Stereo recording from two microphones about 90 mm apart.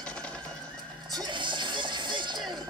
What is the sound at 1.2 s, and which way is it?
Music, 60° right (ahead or behind).